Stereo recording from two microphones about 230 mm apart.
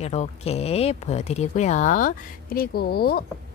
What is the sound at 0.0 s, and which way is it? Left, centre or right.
Speech, left.